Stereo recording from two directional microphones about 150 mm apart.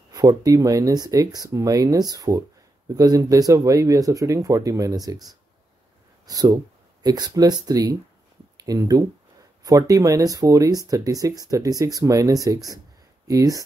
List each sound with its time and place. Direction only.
0.1 s speech: 25° right (ahead or behind)
6.2 s speech: 25° right (ahead or behind)